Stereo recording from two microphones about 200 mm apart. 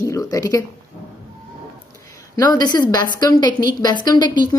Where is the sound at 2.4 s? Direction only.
20° left (ahead or behind).